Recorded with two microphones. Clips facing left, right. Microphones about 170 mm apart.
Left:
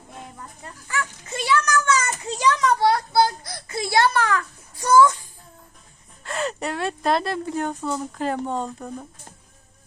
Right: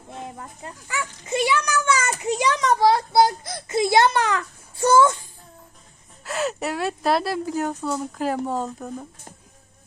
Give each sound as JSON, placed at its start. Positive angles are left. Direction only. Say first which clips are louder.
{"t": 0.9, "sound": "a child's voice", "louder": "right 1 dB", "side_deg": -15}
{"t": 6.2, "sound": "speech", "louder": "right 1 dB", "side_deg": -5}